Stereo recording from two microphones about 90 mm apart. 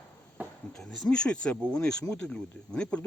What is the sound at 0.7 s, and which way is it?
Speech, 5° left (ahead or behind).